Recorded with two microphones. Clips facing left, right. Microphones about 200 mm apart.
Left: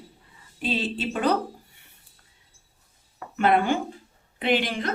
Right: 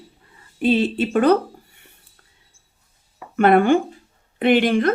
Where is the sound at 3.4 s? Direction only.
55° right (ahead or behind).